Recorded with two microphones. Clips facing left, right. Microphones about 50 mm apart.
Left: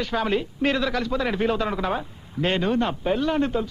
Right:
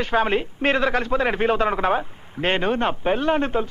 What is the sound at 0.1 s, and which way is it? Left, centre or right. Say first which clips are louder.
A man's voice: right 5 dB; right.